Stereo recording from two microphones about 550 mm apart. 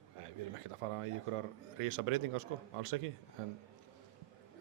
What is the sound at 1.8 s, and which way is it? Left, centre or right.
Speech, right.